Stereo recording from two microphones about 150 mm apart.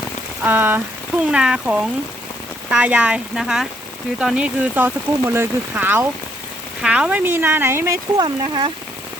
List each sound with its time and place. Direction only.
0.4 s speech: 10° right (ahead or behind)
8.1 s speech: 30° right (ahead or behind)